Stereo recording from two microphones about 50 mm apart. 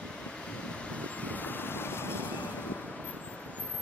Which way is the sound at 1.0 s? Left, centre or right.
Left.